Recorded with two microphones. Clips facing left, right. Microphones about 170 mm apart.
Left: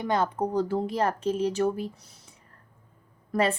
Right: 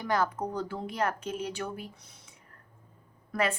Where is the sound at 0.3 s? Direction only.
35° left (ahead or behind).